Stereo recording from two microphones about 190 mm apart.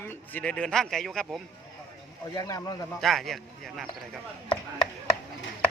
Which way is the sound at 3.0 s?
Centre (ahead or behind).